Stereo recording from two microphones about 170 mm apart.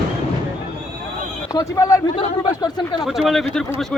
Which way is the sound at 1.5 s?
20° left (ahead or behind).